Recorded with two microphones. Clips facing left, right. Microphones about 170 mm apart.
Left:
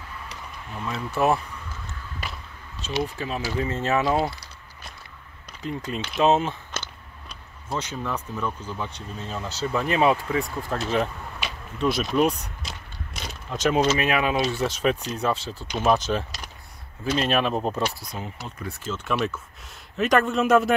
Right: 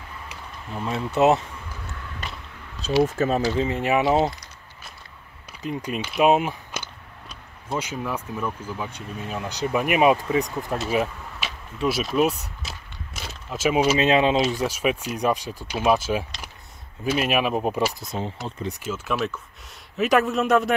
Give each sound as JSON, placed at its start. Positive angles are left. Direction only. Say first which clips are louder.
{"t": 0.7, "sound": "speech", "louder": "right 4 dB", "side_deg": -25}
{"t": 3.1, "sound": "speech", "louder": "right 8 dB", "side_deg": -45}
{"t": 3.4, "sound": "speech", "louder": "right 3 dB", "side_deg": -20}
{"t": 5.5, "sound": "speech", "louder": "right 2 dB", "side_deg": -15}
{"t": 10.8, "sound": "speech", "louder": "even", "side_deg": -5}
{"t": 13.9, "sound": "speech", "louder": "right 4 dB", "side_deg": -25}
{"t": 18.0, "sound": "speech", "louder": "right 5 dB", "side_deg": -25}
{"t": 18.9, "sound": "a man's voice", "louder": "left 1 dB", "side_deg": 0}